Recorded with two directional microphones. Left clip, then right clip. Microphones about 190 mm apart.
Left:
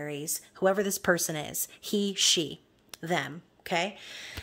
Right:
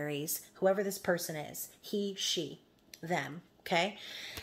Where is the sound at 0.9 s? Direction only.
45° left (ahead or behind).